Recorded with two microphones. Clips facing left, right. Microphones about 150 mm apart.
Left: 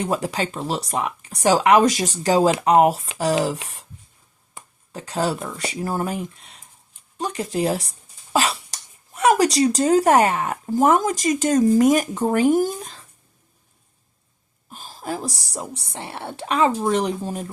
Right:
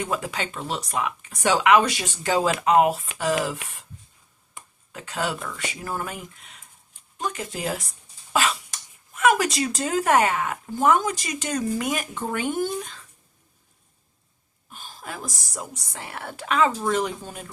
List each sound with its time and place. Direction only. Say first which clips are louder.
0.1 s speech: left 5 dB; 35° left (ahead or behind)
4.9 s speech: left 5 dB; 35° left (ahead or behind)
14.7 s speech: left 8 dB; 35° left (ahead or behind)